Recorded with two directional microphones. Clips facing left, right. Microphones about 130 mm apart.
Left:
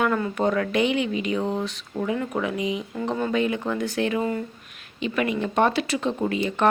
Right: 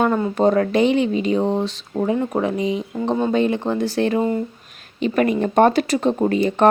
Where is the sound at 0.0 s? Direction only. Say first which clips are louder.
Right 5 dB; 30° right (ahead or behind).